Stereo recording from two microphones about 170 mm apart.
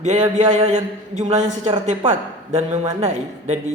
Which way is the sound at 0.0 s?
40° right (ahead or behind).